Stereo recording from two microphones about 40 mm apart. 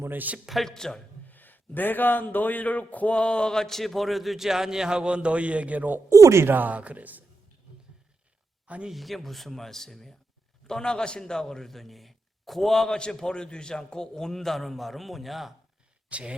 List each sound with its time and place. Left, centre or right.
0.1 s speech: right
0.6 s a man's voice: centre
1.3 s a man's voice: left; by 6.0 s right
6.4 s speech: right
6.7 s speech: right
8.9 s a man's voice: centre
16.0 s speech: right